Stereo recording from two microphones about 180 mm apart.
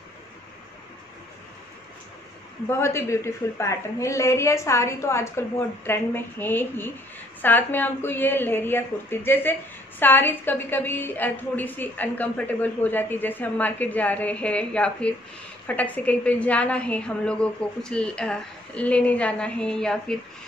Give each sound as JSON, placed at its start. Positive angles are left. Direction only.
{"t": 2.7, "sound": "a woman's voice", "side_deg": 15}